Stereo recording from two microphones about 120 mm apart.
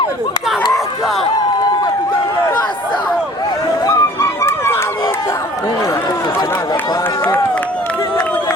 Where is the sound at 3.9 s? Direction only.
25° left (ahead or behind).